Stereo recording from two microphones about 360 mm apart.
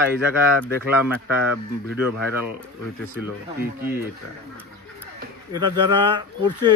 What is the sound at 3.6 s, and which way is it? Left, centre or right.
Speech, right.